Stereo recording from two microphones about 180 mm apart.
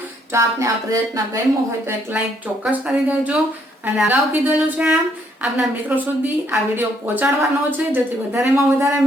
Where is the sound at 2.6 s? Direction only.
5° right (ahead or behind).